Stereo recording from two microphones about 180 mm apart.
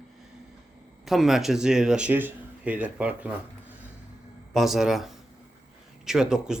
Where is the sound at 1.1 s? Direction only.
Centre (ahead or behind).